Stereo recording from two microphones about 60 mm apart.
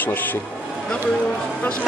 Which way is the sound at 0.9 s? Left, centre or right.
Centre.